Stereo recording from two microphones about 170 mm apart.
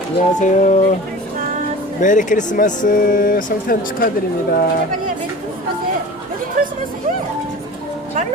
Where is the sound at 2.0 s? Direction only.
50° left (ahead or behind).